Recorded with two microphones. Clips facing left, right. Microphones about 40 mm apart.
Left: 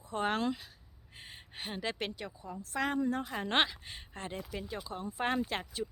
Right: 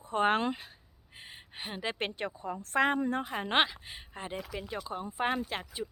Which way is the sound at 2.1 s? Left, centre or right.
Right.